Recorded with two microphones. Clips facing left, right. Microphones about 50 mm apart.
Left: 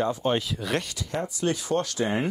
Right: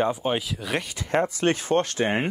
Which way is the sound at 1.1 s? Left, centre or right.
Right.